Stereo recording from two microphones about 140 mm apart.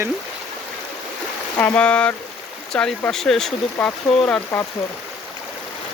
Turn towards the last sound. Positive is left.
turn(degrees=10)  # may be behind; listen again after turning